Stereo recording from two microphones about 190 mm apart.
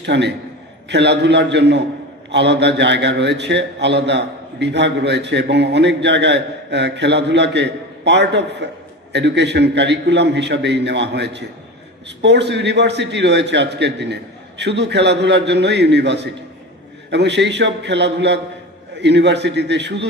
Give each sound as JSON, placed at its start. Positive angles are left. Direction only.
{"t": 0.0, "sound": "a man's voice", "side_deg": -65}